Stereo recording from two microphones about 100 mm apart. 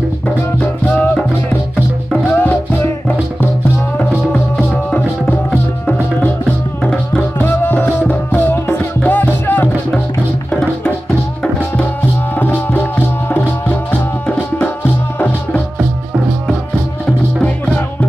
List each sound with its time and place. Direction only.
0.6 s music: 15° left (ahead or behind)
2.3 s music: 15° left (ahead or behind)
4.3 s music: 15° left (ahead or behind)
7.3 s music: 20° left (ahead or behind)
12.4 s music: 20° left (ahead or behind)